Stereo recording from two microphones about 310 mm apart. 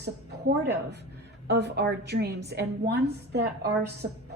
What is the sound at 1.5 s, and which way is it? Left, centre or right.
A woman's voice, right.